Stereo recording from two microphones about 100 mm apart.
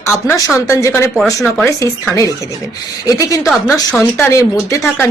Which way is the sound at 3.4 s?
Centre (ahead or behind).